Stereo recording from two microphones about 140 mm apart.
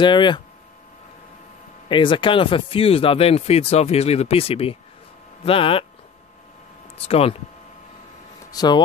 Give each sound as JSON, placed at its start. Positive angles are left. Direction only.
{"t": 0.0, "sound": "speech", "side_deg": 35}
{"t": 1.9, "sound": "speech", "side_deg": 35}
{"t": 7.0, "sound": "speech", "side_deg": 45}
{"t": 8.5, "sound": "speech", "side_deg": 30}